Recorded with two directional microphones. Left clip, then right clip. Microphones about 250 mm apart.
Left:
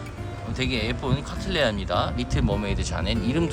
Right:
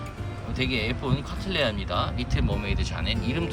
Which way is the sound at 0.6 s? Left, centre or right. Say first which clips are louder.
Left 1 dB; centre.